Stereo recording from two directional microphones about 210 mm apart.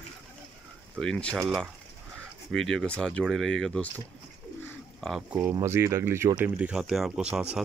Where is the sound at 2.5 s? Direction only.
5° left (ahead or behind).